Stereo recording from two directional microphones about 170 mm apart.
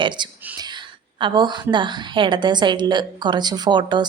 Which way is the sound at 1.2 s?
25° right (ahead or behind).